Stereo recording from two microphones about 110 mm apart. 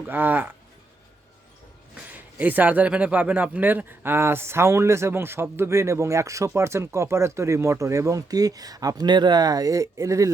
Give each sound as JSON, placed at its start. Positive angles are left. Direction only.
{"t": 0.1, "sound": "speech", "side_deg": -15}
{"t": 2.1, "sound": "a man's voice", "side_deg": -15}